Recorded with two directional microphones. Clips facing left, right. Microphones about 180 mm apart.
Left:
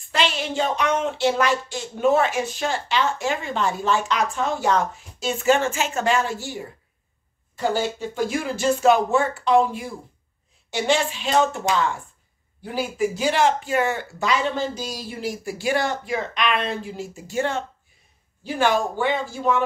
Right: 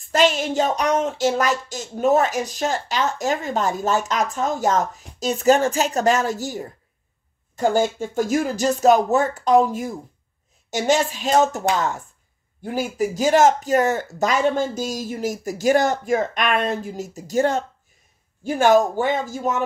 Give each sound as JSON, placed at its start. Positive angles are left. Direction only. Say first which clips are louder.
{"t": 0.1, "sound": "speech", "louder": "right 5 dB", "side_deg": -45}
{"t": 12.7, "sound": "speech", "louder": "right 1 dB", "side_deg": -40}